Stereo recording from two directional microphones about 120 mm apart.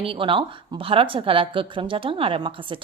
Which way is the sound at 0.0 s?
45° right (ahead or behind).